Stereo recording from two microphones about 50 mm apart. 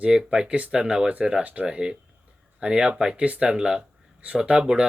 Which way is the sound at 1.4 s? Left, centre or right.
Right.